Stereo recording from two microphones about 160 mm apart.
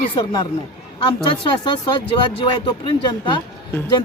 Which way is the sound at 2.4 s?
30° left (ahead or behind).